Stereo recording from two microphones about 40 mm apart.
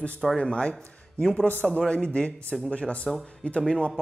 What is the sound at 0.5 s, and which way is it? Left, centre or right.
Speech, centre.